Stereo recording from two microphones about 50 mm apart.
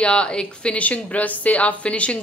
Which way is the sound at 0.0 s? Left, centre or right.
Left.